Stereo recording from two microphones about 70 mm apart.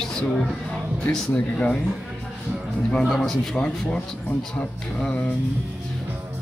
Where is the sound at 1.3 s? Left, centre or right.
Centre.